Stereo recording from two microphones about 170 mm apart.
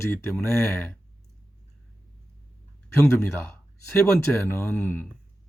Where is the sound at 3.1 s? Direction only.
10° left (ahead or behind).